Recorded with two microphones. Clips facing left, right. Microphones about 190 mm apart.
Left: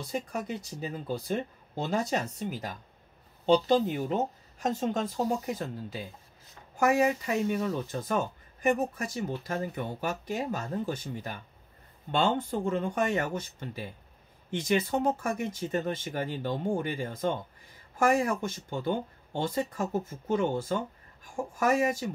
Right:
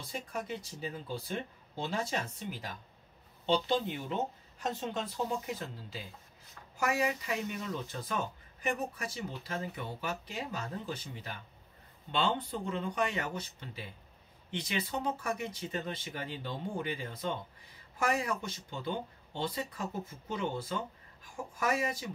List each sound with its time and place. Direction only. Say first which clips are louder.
0.1 s speech: left 4 dB; 45° left (ahead or behind)